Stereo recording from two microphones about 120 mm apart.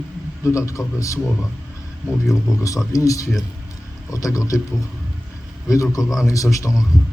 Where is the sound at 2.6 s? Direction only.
30° left (ahead or behind).